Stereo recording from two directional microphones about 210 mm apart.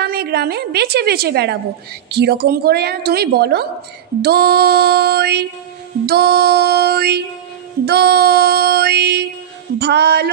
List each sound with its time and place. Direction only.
0.0 s a woman's voice: 50° right (ahead or behind)